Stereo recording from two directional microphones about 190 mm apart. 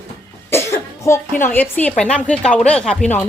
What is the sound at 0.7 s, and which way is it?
A woman's voice, 15° left (ahead or behind).